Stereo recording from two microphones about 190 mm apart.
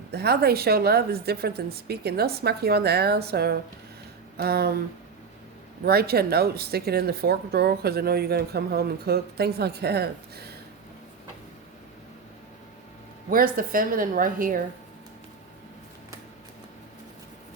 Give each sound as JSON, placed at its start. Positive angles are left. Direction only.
{"t": 0.1, "sound": "speech", "side_deg": -55}
{"t": 5.8, "sound": "speech", "side_deg": -55}
{"t": 13.3, "sound": "a woman's voice", "side_deg": -50}